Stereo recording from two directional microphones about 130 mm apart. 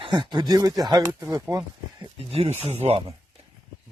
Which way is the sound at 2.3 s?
50° right (ahead or behind).